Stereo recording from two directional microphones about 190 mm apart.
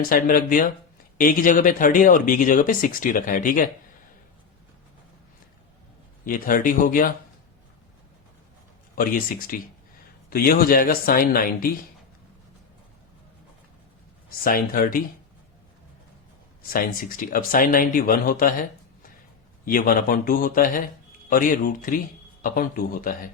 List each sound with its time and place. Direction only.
0.1 s a man's voice: 45° left (ahead or behind)
6.2 s a man's voice: 45° left (ahead or behind)
9.0 s a man's voice: 50° left (ahead or behind)
14.3 s a man's voice: 50° left (ahead or behind)
16.7 s a man's voice: 45° left (ahead or behind)
19.6 s a man's voice: 45° left (ahead or behind)